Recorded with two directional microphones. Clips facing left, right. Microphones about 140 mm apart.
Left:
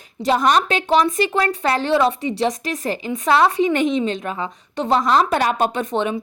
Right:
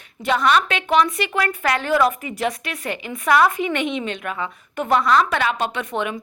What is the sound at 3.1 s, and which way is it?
A woman's voice, 25° left (ahead or behind).